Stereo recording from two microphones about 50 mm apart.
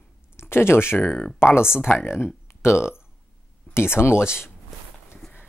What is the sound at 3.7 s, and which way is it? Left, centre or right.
Speech, left.